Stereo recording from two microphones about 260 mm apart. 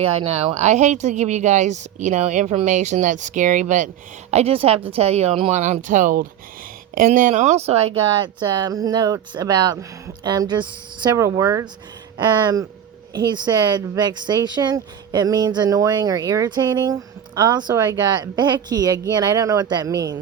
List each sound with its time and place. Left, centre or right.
0.0 s speech: right